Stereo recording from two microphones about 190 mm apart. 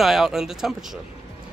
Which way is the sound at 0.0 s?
Centre (ahead or behind).